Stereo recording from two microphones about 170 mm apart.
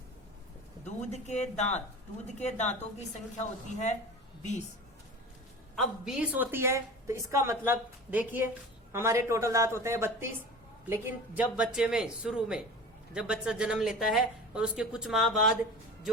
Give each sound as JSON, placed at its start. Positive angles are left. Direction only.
{"t": 0.9, "sound": "speech", "side_deg": 45}
{"t": 5.7, "sound": "a woman's voice", "side_deg": 0}
{"t": 11.5, "sound": "a woman's voice", "side_deg": -5}